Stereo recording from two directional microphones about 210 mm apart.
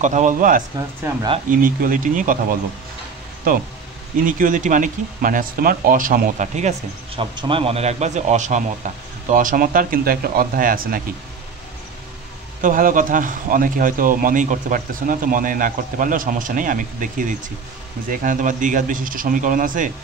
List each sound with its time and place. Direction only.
0.0 s speech: 35° right (ahead or behind)
0.7 s speech: 20° right (ahead or behind)
1.6 s speech: 40° right (ahead or behind)
4.2 s speech: 40° right (ahead or behind)
7.2 s speech: 25° right (ahead or behind); by 11.0 s 40° right (ahead or behind)
12.6 s speech: 40° right (ahead or behind)